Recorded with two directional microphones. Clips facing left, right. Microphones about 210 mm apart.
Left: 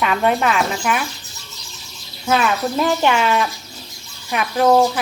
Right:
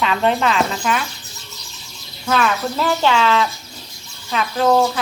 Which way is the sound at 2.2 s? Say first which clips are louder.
Left 1 dB; 15° left (ahead or behind).